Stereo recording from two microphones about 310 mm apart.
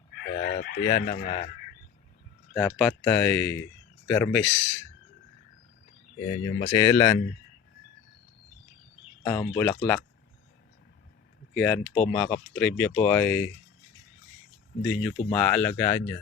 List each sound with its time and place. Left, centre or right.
0.3 s speech: left
2.5 s speech: centre
6.3 s speech: centre
9.2 s speech: centre
11.5 s speech: centre
14.8 s speech: centre